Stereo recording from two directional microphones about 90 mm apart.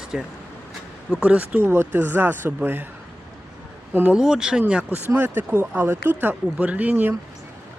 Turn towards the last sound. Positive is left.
turn(degrees=-20)  # may be behind; listen again after turning